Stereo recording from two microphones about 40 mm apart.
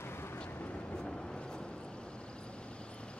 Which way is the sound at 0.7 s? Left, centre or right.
Left.